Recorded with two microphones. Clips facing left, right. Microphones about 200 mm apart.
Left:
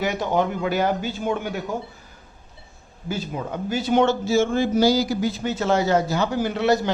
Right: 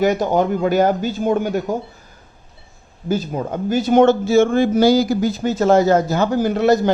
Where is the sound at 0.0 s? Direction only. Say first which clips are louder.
Right 6 dB; 40° right (ahead or behind).